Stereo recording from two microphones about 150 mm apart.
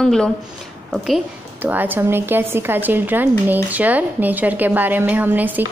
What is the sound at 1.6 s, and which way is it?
Speech, 10° right (ahead or behind).